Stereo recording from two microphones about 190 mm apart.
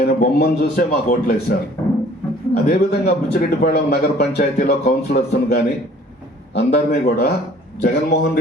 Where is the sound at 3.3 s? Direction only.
55° left (ahead or behind).